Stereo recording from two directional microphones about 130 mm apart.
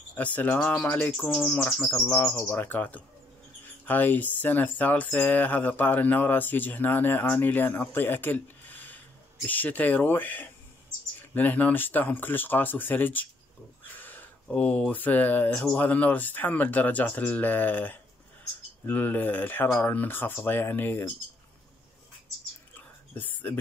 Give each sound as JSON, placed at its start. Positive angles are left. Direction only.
{"t": 0.1, "sound": "speech", "side_deg": 10}
{"t": 22.8, "sound": "whispering", "side_deg": 15}